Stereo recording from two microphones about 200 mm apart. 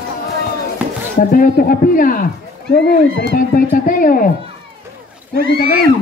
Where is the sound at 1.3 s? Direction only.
45° left (ahead or behind).